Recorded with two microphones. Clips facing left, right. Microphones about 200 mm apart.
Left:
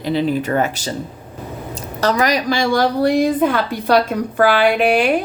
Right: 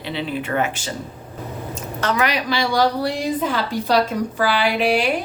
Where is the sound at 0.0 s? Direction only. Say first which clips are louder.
Left 8 dB; 40° left (ahead or behind).